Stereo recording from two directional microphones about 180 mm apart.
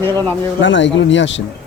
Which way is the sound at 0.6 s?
90° left.